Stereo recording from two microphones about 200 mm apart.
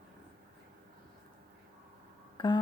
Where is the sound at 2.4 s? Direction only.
25° left (ahead or behind).